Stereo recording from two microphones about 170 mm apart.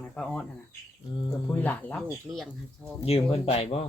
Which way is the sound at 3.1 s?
35° left (ahead or behind).